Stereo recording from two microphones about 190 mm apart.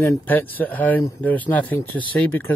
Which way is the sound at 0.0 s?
15° left (ahead or behind).